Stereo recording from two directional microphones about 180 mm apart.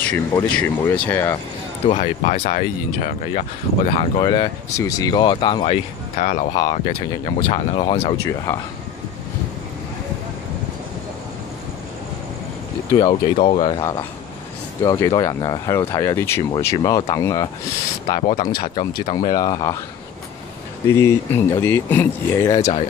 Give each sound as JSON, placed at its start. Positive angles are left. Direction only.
{"t": 0.3, "sound": "speech", "side_deg": 10}
{"t": 2.0, "sound": "speech", "side_deg": 40}
{"t": 3.9, "sound": "speech", "side_deg": 25}
{"t": 12.9, "sound": "speech", "side_deg": 25}
{"t": 14.8, "sound": "speech", "side_deg": 20}
{"t": 18.0, "sound": "speech", "side_deg": 50}
{"t": 19.0, "sound": "speech", "side_deg": 20}
{"t": 20.9, "sound": "speech", "side_deg": 15}